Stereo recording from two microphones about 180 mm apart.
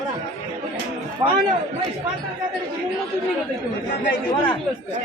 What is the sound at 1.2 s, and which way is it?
Speech, 25° right (ahead or behind).